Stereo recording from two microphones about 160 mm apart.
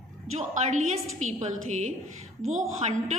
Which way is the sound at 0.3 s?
45° right (ahead or behind).